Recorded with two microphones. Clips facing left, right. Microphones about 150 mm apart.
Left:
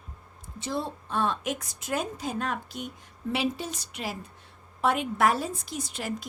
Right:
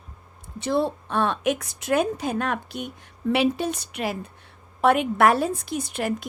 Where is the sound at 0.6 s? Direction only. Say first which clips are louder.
Right 9 dB; 65° right (ahead or behind).